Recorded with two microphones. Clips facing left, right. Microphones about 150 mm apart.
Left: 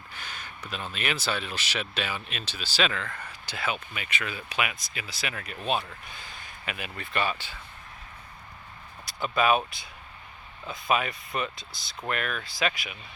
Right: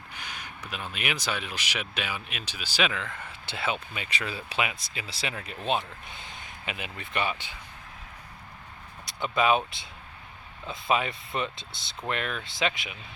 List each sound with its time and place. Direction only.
0.1 s speech: 15° right (ahead or behind)
9.0 s speech: 20° right (ahead or behind)